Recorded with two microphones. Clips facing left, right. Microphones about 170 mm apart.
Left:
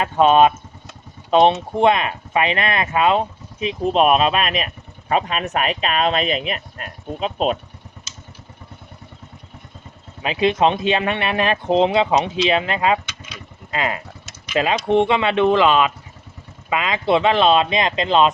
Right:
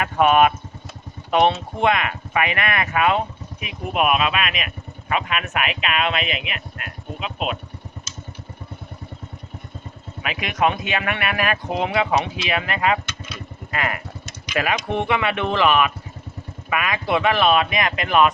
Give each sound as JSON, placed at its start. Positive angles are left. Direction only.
{"t": 0.0, "sound": "speech", "side_deg": 25}
{"t": 10.2, "sound": "speech", "side_deg": 30}